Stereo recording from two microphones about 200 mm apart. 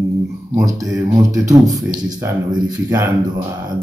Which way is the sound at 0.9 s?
15° right (ahead or behind).